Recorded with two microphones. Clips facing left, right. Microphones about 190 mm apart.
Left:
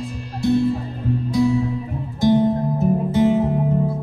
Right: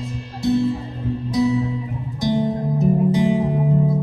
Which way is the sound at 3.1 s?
15° right (ahead or behind).